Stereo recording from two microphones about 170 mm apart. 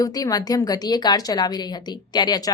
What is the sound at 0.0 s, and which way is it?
A woman's voice, 20° left (ahead or behind).